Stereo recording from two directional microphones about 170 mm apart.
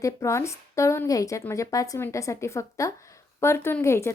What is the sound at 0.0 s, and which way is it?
A woman's voice, 15° left (ahead or behind).